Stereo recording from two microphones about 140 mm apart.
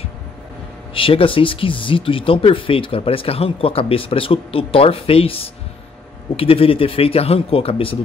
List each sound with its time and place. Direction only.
0.9 s speech: 40° left (ahead or behind)